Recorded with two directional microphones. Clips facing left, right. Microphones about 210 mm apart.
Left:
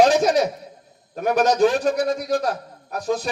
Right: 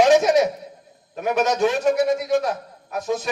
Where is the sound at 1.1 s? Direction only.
40° left (ahead or behind).